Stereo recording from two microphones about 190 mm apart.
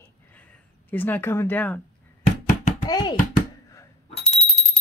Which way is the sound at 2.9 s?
20° left (ahead or behind).